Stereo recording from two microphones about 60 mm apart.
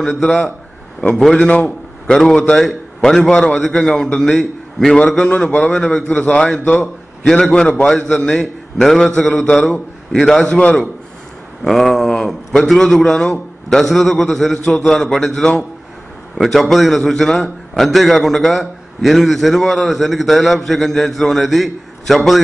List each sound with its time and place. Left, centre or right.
0.0 s a man's voice: centre
4.9 s a man's voice: left
5.2 s a man's voice: centre
5.5 s a man's voice: left
5.8 s a man's voice: centre
11.6 s a man's voice: centre